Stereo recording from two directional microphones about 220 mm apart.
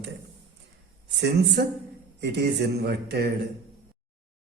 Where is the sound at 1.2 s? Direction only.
50° right (ahead or behind).